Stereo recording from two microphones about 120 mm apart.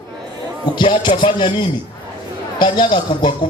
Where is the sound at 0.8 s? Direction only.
45° left (ahead or behind).